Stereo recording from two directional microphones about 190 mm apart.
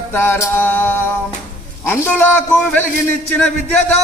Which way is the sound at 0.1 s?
10° left (ahead or behind).